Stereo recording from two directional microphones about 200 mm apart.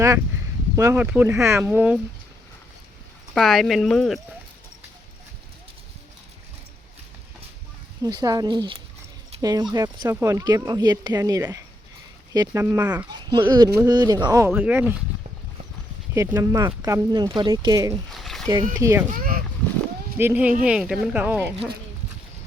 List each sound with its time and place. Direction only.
0.8 s speech: 15° right (ahead or behind)
3.3 s speech: centre (ahead or behind)
8.0 s speech: 20° right (ahead or behind)
16.1 s speech: 15° right (ahead or behind)
18.1 s a sound: centre (ahead or behind)
18.8 s speech: 15° right (ahead or behind)
19.1 s speech: 45° right (ahead or behind)
20.1 s speech: 10° right (ahead or behind)